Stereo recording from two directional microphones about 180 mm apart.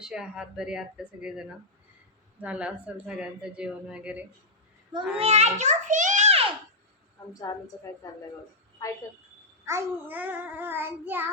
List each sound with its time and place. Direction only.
0.0 s a woman's voice: 5° right (ahead or behind)
5.1 s a sound: 35° right (ahead or behind)
7.5 s a woman's voice: 15° left (ahead or behind)
9.6 s a woman's voice: 15° right (ahead or behind)